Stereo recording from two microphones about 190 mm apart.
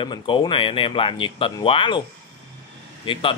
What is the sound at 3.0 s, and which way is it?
Speech, 25° left (ahead or behind).